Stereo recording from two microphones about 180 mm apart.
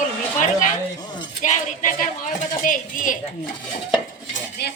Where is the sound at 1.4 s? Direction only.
45° left (ahead or behind).